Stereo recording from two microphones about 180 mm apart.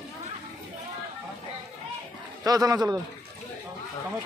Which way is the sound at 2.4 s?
20° right (ahead or behind).